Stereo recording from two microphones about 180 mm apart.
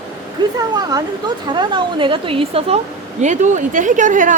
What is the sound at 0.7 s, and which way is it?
Speech, 25° right (ahead or behind).